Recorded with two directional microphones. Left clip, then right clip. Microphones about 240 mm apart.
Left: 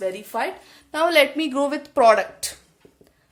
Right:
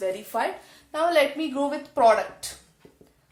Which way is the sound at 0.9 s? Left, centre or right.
Left.